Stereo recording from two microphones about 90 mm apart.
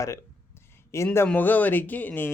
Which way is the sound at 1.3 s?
20° left (ahead or behind).